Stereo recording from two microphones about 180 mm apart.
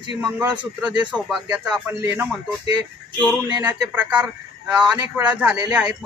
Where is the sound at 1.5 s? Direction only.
5° right (ahead or behind).